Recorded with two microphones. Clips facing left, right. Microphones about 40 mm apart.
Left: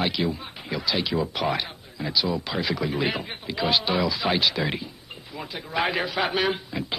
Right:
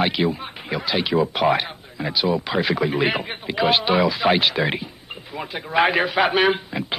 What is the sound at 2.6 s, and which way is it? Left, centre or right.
A man's voice, right.